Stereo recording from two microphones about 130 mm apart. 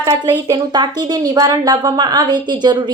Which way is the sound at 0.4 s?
35° right (ahead or behind).